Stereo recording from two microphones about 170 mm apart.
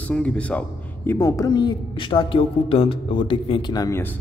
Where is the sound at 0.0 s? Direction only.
5° left (ahead or behind).